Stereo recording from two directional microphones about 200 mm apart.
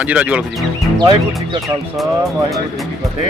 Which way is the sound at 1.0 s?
25° right (ahead or behind).